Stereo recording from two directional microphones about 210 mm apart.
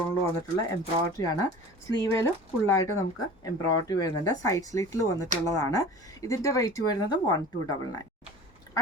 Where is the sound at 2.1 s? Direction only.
15° left (ahead or behind).